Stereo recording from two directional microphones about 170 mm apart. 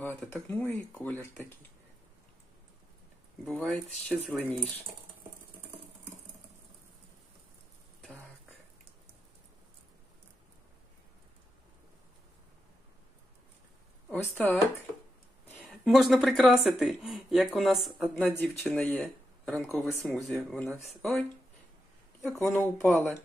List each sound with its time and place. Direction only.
0.2 s speech: 10° left (ahead or behind)
3.4 s speech: 10° left (ahead or behind)
4.1 s speech: centre (ahead or behind)
8.0 s a sound: 5° left (ahead or behind)
14.0 s a woman's voice: 5° left (ahead or behind)
15.7 s speech: centre (ahead or behind)
18.0 s speech: 10° left (ahead or behind)